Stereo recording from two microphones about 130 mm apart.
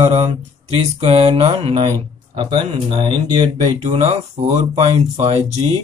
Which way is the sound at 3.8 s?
55° right (ahead or behind).